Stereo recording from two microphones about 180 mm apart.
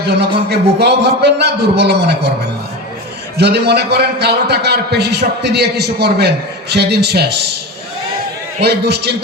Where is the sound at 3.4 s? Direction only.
65° right (ahead or behind).